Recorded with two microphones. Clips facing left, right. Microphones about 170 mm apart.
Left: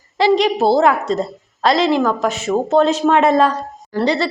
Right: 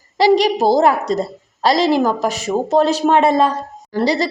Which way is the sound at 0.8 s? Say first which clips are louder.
Even; 40° right (ahead or behind).